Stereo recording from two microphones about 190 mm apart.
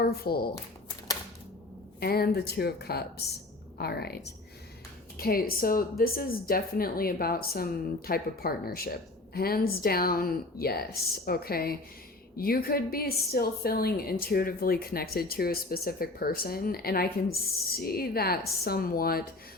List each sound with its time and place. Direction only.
0.0 s speech: 55° left (ahead or behind)
2.0 s speech: 55° left (ahead or behind)